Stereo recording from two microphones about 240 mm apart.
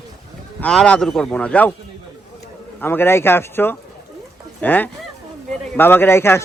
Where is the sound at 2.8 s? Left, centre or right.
Centre.